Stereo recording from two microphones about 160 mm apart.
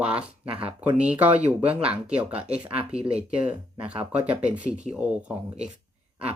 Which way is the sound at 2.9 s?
40° right (ahead or behind).